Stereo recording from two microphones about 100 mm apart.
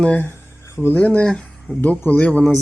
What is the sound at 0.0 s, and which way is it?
Speech, 15° left (ahead or behind).